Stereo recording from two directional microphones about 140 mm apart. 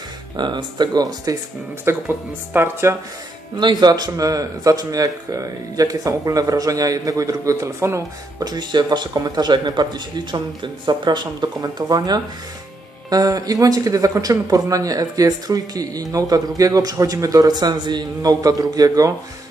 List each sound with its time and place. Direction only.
0.3 s speech: 30° right (ahead or behind)
1.8 s speech: 15° right (ahead or behind)
3.6 s speech: 30° right (ahead or behind)